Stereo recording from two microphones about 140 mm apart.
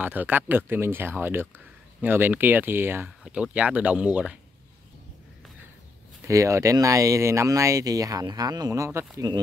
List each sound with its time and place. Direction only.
0.0 s speech: 15° right (ahead or behind)
6.2 s speech: 20° right (ahead or behind)